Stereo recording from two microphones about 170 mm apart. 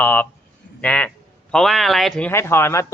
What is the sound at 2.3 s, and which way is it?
Speech, 15° left (ahead or behind).